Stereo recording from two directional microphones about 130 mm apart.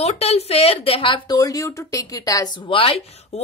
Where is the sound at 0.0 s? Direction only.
50° left (ahead or behind).